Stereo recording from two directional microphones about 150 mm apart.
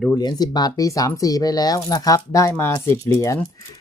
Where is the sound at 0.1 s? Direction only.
25° left (ahead or behind).